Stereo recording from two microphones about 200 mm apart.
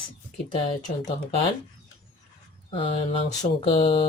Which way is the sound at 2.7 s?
25° left (ahead or behind).